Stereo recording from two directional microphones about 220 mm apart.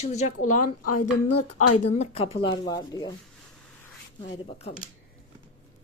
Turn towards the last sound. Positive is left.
turn(degrees=25)  # may be behind; listen again after turning